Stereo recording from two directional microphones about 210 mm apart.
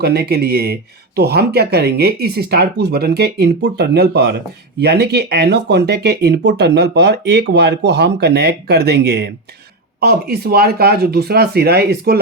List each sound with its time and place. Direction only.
0.0 s speech: 50° right (ahead or behind)